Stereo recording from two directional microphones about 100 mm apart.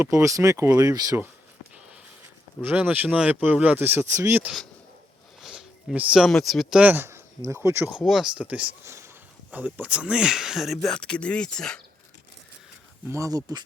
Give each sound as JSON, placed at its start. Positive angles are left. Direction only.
{"t": 0.0, "sound": "speech", "side_deg": -30}
{"t": 2.6, "sound": "speech", "side_deg": -20}
{"t": 5.4, "sound": "a sound", "side_deg": -5}
{"t": 6.0, "sound": "speech", "side_deg": -10}
{"t": 6.2, "sound": "speech", "side_deg": 0}
{"t": 6.8, "sound": "speech", "side_deg": -20}
{"t": 7.9, "sound": "speech", "side_deg": -5}
{"t": 8.8, "sound": "speech", "side_deg": -25}
{"t": 9.5, "sound": "speech", "side_deg": -15}
{"t": 13.1, "sound": "speech", "side_deg": -30}